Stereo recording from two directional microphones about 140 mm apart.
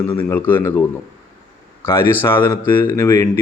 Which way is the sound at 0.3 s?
15° left (ahead or behind).